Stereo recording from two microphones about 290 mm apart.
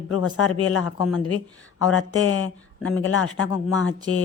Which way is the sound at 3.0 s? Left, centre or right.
Left.